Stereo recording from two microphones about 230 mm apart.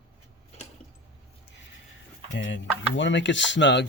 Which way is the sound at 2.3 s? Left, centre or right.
Left.